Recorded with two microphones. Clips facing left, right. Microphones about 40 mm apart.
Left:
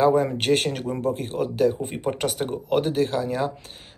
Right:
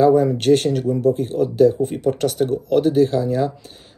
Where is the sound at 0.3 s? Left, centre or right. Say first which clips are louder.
Right 6 dB; left.